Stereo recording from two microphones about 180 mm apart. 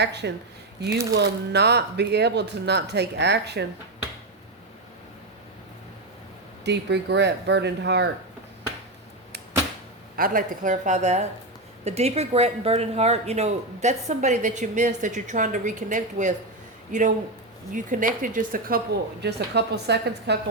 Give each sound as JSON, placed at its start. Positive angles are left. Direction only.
{"t": 0.0, "sound": "speech", "side_deg": -70}
{"t": 6.7, "sound": "speech", "side_deg": -75}
{"t": 10.2, "sound": "a woman's voice", "side_deg": -50}
{"t": 19.2, "sound": "speech", "side_deg": -65}